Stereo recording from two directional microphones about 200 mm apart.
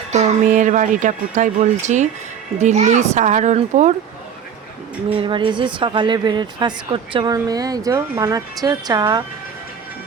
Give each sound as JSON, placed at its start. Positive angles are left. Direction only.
{"t": 0.1, "sound": "speech", "side_deg": -35}
{"t": 5.1, "sound": "a woman's voice", "side_deg": -25}